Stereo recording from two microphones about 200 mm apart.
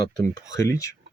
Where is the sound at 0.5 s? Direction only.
15° left (ahead or behind).